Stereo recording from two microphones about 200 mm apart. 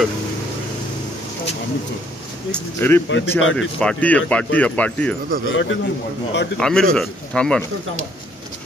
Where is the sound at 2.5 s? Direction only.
10° left (ahead or behind).